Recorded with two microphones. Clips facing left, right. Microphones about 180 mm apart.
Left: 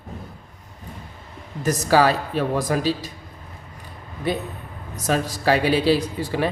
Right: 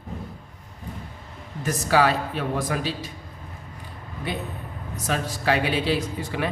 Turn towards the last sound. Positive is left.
turn(degrees=35)  # may be behind; listen again after turning